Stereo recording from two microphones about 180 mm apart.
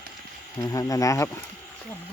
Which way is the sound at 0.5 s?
20° left (ahead or behind).